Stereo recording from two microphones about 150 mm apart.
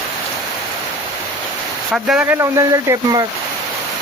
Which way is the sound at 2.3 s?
20° right (ahead or behind).